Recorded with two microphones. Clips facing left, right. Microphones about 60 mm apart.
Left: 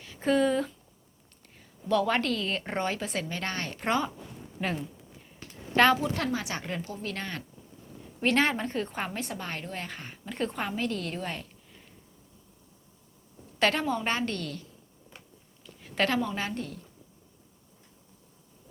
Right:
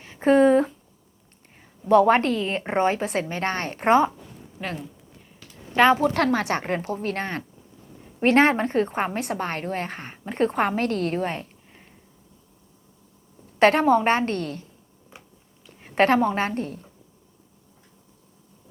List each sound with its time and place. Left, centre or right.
0.0 s speech: right
1.9 s a woman's voice: right
4.6 s speech: centre
6.0 s a woman's voice: right
13.6 s a woman's voice: right
15.1 s a sound: centre
15.8 s a woman's voice: right